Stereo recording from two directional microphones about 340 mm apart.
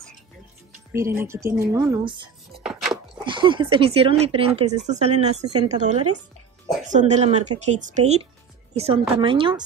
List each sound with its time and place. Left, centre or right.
0.9 s speech: centre
2.6 s chopping: centre
3.3 s speech: centre